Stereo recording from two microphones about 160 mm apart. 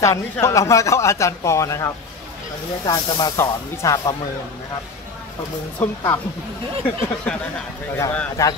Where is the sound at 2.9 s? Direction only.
25° left (ahead or behind).